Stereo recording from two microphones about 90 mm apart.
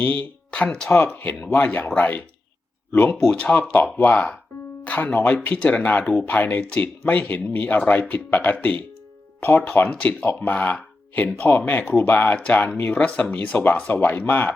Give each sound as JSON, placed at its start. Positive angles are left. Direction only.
{"t": 0.0, "sound": "speech", "side_deg": 15}